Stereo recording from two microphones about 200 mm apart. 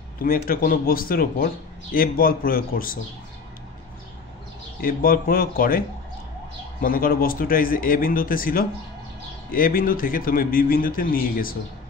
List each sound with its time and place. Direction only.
0.2 s speech: 45° left (ahead or behind)
4.8 s speech: 45° left (ahead or behind)